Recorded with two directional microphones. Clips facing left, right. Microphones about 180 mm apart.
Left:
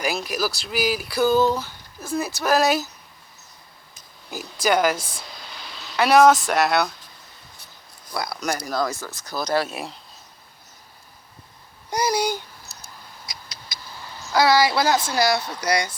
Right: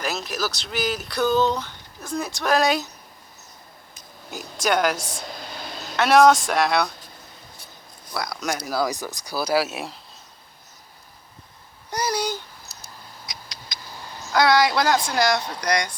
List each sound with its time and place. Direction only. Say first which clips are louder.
0.0 s speech: left 2 dB; 10° left (ahead or behind)
4.6 s speech: left 2 dB; centre (ahead or behind)
5.0 s a sound: right 5 dB; 45° right (ahead or behind)
6.0 s speech: even; 5° left (ahead or behind)
8.1 s speech: left 1 dB; centre (ahead or behind)
11.9 s speech: left 3 dB; 10° left (ahead or behind)
13.2 s a sound: right 1 dB; 5° left (ahead or behind)
14.3 s speech: even; 5° left (ahead or behind)